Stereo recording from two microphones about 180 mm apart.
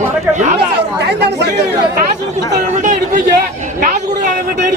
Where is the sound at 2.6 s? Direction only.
45° right (ahead or behind).